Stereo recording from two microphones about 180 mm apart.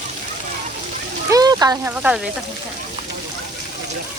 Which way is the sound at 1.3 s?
20° right (ahead or behind).